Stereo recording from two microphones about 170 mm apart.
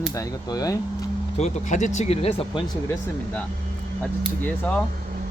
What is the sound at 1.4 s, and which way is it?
Speech, 45° left (ahead or behind).